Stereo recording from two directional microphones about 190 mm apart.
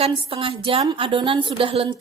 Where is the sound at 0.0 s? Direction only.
30° right (ahead or behind).